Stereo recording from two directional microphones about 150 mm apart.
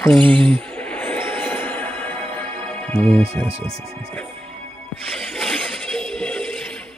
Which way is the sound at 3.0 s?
40° right (ahead or behind).